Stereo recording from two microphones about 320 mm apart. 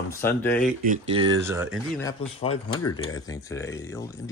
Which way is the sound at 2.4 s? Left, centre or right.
Left.